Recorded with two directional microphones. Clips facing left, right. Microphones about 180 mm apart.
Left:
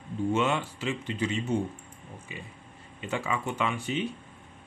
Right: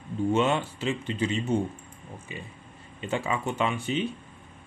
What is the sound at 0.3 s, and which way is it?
Speech, 30° right (ahead or behind).